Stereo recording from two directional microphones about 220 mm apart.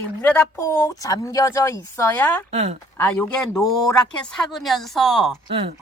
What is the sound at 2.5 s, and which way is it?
Speech, 30° right (ahead or behind).